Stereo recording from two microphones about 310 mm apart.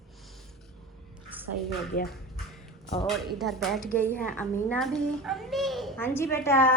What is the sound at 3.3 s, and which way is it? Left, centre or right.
A child's voice, centre.